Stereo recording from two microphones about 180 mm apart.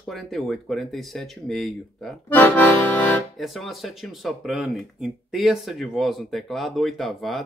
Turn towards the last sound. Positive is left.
turn(degrees=0)  # may be behind; listen again after turning